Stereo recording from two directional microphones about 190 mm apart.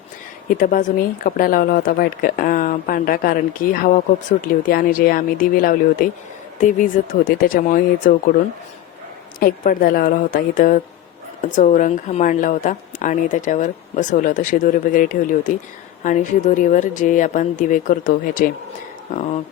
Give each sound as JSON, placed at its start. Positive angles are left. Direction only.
{"t": 0.6, "sound": "speech", "side_deg": 45}
{"t": 9.4, "sound": "speech", "side_deg": 50}